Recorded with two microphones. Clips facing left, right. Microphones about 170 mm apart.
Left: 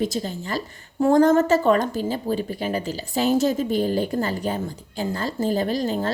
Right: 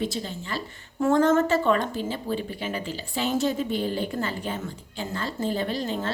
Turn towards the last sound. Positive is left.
turn(degrees=40)  # may be behind; listen again after turning